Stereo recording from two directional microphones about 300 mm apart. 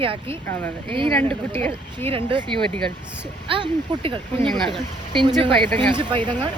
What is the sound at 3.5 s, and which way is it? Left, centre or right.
Speech, centre.